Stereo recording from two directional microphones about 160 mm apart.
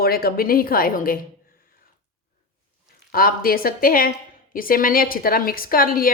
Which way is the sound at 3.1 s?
65° left (ahead or behind).